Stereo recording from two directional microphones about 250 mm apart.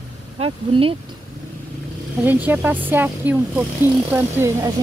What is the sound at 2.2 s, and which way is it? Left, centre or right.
Speech, centre.